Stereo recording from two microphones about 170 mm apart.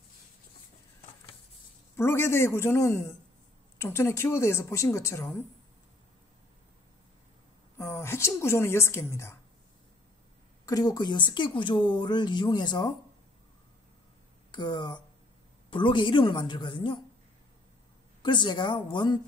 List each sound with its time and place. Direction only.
2.0 s speech: 15° left (ahead or behind)
7.7 s a woman's voice: 15° left (ahead or behind)
10.6 s a woman's voice: 20° left (ahead or behind)
14.5 s a woman's voice: 25° left (ahead or behind)
18.2 s a woman's voice: 25° left (ahead or behind)